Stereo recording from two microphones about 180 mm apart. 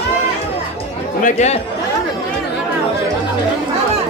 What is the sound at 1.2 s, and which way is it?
Speech, 40° left (ahead or behind).